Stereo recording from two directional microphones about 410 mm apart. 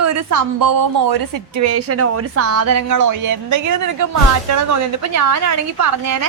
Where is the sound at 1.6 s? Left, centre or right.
Right.